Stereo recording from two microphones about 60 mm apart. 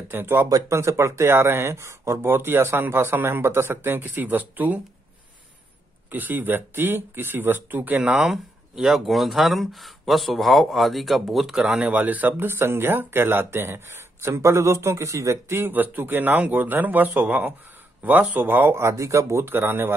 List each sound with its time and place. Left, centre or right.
0.1 s speech: right
0.7 s speech: right
2.2 s speech: right
6.0 s speech: right
8.0 s speech: centre
11.8 s speech: right
15.5 s speech: right
18.8 s speech: right
19.5 s speech: right